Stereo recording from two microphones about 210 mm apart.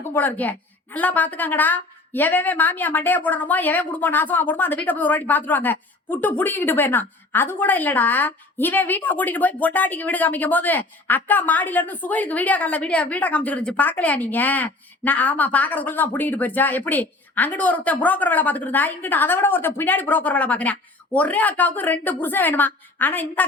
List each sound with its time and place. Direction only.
0.0 s a woman's voice: 10° left (ahead or behind)